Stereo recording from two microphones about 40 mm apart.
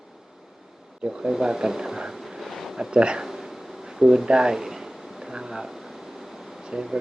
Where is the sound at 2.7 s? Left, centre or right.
Centre.